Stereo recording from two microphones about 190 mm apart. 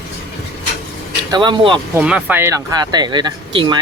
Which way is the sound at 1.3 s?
25° right (ahead or behind).